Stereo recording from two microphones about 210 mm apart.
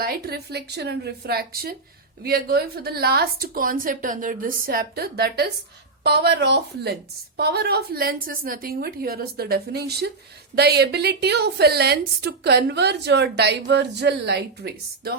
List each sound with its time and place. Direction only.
0.0 s a woman's voice: 45° right (ahead or behind)